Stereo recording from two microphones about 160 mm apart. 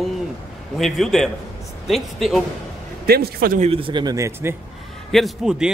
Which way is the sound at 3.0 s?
75° right (ahead or behind).